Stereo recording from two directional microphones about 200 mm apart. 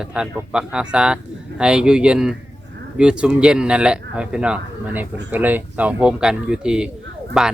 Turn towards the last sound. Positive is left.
turn(degrees=0)  # may be behind; listen again after turning